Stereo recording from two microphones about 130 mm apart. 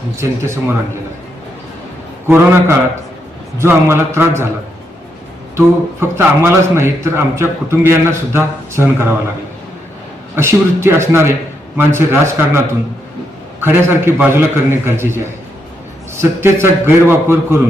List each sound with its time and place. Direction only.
2.2 s a man's voice: 20° right (ahead or behind)
5.5 s a man's voice: 20° right (ahead or behind)
10.3 s a man's voice: 20° right (ahead or behind)